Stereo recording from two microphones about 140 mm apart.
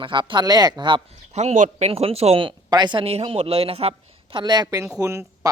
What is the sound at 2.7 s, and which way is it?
A woman's voice, 30° right (ahead or behind).